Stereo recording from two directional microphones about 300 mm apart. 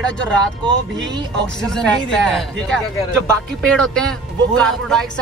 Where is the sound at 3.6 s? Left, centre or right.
Centre.